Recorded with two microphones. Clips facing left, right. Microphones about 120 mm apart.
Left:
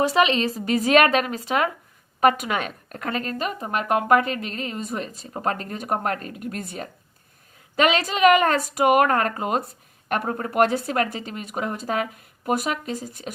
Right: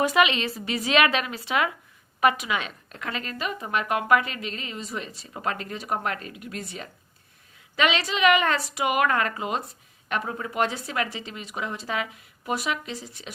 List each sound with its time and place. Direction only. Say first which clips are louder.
0.0 s speech: left 2 dB; 35° left (ahead or behind)